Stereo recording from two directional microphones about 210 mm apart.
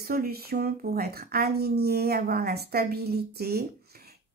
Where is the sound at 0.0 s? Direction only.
45° right (ahead or behind).